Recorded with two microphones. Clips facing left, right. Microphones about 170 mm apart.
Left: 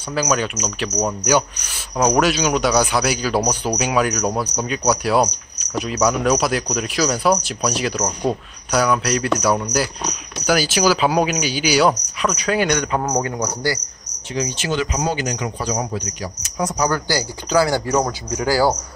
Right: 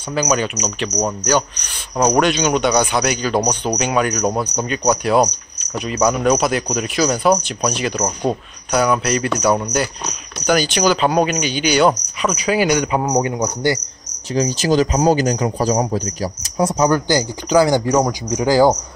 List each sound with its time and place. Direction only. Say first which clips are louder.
0.1 s speech: right 2 dB; centre (ahead or behind); by 13.7 s 20° right (ahead or behind)
14.3 s a man's voice: right 6 dB; 35° right (ahead or behind); by 18.8 s 20° right (ahead or behind)